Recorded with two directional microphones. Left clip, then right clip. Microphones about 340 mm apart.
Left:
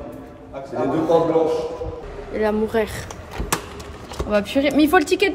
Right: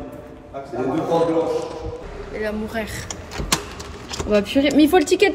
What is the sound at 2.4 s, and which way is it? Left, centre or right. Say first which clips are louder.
Speech: left 6 dB; centre.